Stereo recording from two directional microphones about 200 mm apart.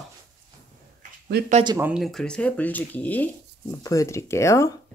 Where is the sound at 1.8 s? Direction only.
5° right (ahead or behind).